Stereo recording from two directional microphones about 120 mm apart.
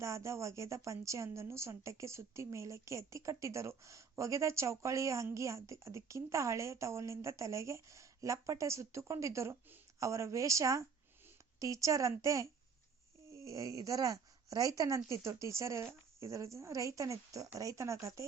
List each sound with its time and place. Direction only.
0.0 s a woman's voice: 25° right (ahead or behind)